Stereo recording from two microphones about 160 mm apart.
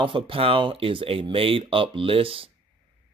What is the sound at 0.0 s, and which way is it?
Speech, 35° right (ahead or behind).